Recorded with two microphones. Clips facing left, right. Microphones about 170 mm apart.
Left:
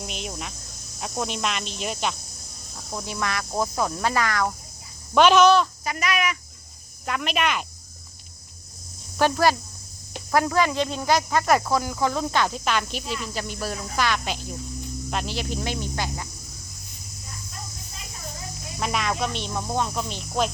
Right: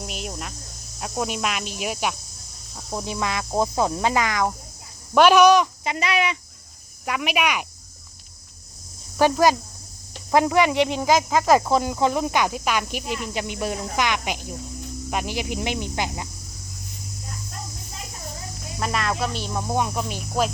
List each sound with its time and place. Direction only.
0.0 s cricket: centre (ahead or behind)
0.9 s speech: 5° right (ahead or behind)
2.9 s speech: 20° right (ahead or behind)
7.0 s speech: 10° right (ahead or behind)
9.1 s speech: 15° right (ahead or behind)
18.8 s speech: centre (ahead or behind)